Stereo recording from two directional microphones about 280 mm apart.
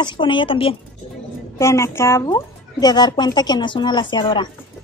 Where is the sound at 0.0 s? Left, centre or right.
Centre.